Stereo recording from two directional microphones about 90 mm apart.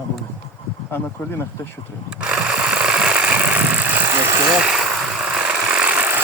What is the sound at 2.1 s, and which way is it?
Sewing machine, 10° right (ahead or behind).